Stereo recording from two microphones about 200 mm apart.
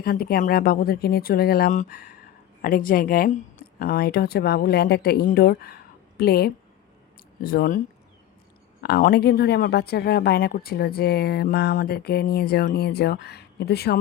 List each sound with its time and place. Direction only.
0.0 s speech: 50° left (ahead or behind)
8.8 s speech: 50° left (ahead or behind)